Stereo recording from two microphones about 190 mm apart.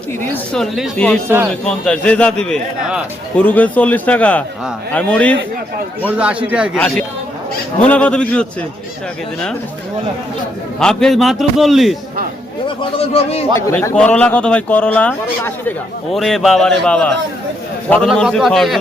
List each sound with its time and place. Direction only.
0.2 s a man's voice: 5° left (ahead or behind)
6.1 s a man's voice: 5° right (ahead or behind)
6.7 s a man's voice: 5° left (ahead or behind)
10.8 s a man's voice: 5° left (ahead or behind)
12.6 s a man's voice: 30° left (ahead or behind)
13.6 s a man's voice: 15° left (ahead or behind)